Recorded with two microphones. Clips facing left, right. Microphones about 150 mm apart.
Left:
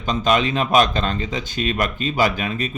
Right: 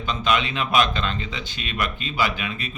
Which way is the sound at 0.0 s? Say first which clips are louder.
Left 4 dB; 40° left (ahead or behind).